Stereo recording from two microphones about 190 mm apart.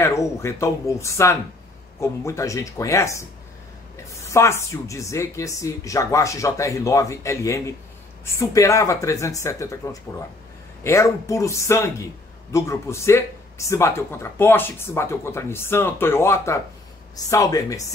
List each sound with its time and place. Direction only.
0.0 s speech: 15° left (ahead or behind)
10.8 s speech: 15° left (ahead or behind)